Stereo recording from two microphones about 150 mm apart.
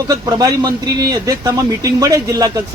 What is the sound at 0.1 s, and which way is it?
Speech, 25° right (ahead or behind).